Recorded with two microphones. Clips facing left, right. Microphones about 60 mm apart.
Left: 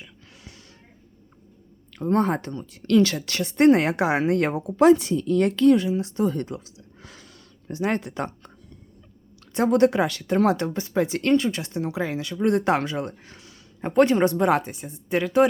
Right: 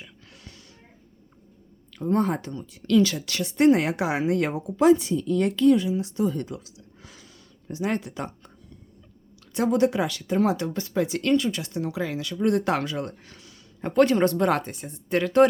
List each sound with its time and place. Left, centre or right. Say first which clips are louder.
1.9 s speech: left 2 dB; left
7.0 s a sound: left 4 dB; left
9.6 s speech: left 3 dB; left
10.3 s speech: left 2 dB; left
10.8 s speech: left 2 dB; left
14.7 s speech: even; centre